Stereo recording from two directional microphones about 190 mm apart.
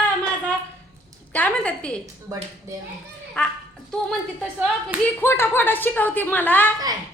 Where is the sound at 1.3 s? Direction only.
10° left (ahead or behind).